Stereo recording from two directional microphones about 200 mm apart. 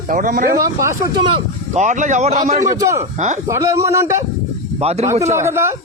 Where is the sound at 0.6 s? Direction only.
15° right (ahead or behind).